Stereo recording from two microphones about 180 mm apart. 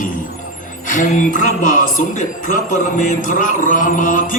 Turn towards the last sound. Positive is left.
turn(degrees=45)  # may be behind; listen again after turning